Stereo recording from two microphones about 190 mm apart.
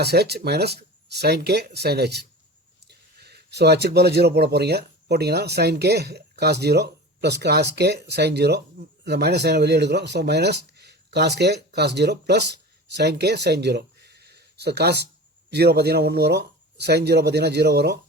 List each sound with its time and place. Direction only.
0.0 s speech: 55° right (ahead or behind)